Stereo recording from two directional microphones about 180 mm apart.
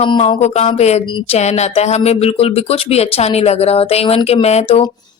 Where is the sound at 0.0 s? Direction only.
30° left (ahead or behind).